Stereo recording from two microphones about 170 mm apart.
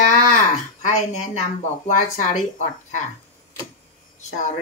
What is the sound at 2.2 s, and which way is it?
Speech, 45° left (ahead or behind).